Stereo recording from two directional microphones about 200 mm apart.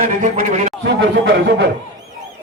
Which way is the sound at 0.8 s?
65° right (ahead or behind).